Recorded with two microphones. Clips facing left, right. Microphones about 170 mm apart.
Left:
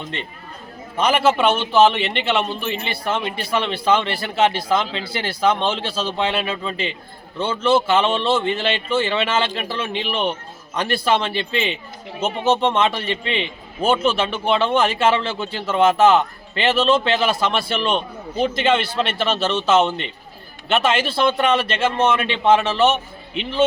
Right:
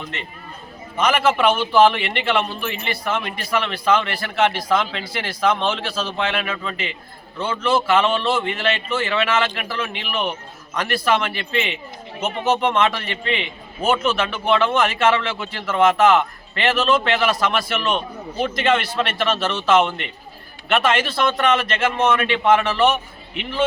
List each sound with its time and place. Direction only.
0.9 s a man's voice: 30° left (ahead or behind)